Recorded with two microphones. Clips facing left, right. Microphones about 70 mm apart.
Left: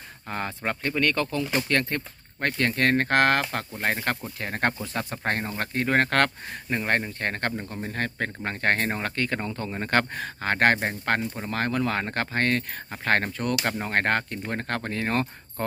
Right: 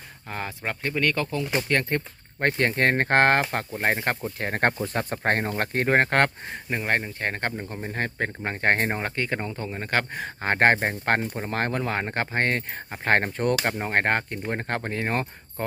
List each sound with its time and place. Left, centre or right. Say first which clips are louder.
0.3 s speech: left 2 dB; centre
2.4 s speech: right 2 dB; right
4.4 s speech: right 3 dB; right
6.0 s speech: right 1 dB; right
6.7 s speech: even; centre
10.2 s speech: right 2 dB; right
11.8 s speech: even; centre
13.7 s speech: right 1 dB; right